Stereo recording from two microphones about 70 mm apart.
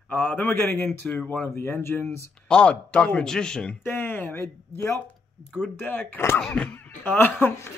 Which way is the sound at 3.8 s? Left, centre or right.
Left.